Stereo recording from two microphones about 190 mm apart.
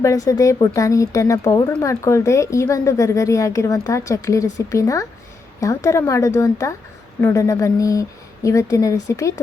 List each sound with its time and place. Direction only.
0.0 s speech: 15° left (ahead or behind)